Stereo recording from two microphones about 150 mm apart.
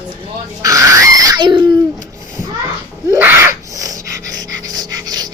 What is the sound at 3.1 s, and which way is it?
Gasp, 15° right (ahead or behind).